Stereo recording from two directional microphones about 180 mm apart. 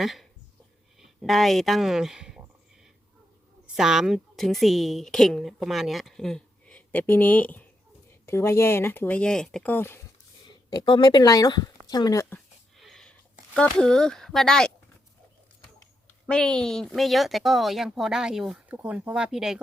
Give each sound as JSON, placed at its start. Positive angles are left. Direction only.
{"t": 0.0, "sound": "speech", "side_deg": 0}
{"t": 3.8, "sound": "a woman's voice", "side_deg": -5}
{"t": 10.7, "sound": "speech", "side_deg": 25}
{"t": 12.3, "sound": "a sound", "side_deg": 0}
{"t": 13.5, "sound": "a woman's voice", "side_deg": 5}
{"t": 16.2, "sound": "a woman's voice", "side_deg": 5}